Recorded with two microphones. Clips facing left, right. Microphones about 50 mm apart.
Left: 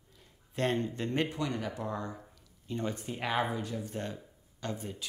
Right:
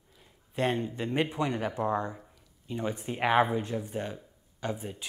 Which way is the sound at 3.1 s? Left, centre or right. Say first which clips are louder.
Right 8 dB; right.